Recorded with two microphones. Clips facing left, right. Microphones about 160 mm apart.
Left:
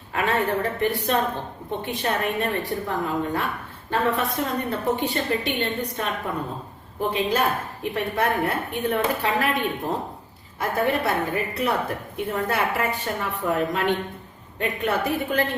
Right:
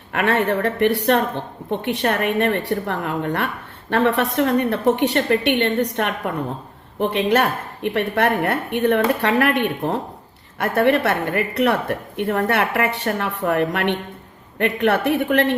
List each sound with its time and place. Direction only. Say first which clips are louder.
0.1 s a woman's voice: right 4 dB; 70° right (ahead or behind)